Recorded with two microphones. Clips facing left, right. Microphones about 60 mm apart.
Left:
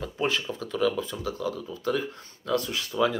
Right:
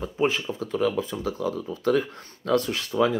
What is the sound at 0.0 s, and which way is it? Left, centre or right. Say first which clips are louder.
Speech: right 3 dB; centre.